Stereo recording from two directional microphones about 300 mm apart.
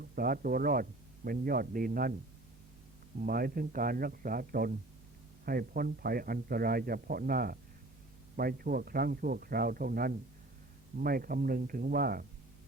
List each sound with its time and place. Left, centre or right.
0.0 s speech: right
3.2 s speech: right